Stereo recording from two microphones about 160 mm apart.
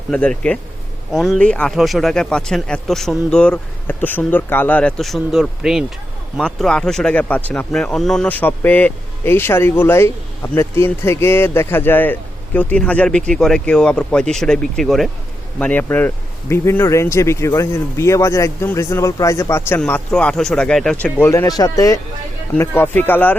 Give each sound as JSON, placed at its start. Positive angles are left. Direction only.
{"t": 0.1, "sound": "speech", "side_deg": 5}